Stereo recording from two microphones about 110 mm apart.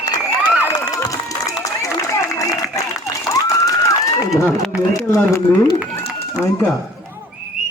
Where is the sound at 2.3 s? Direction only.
30° left (ahead or behind).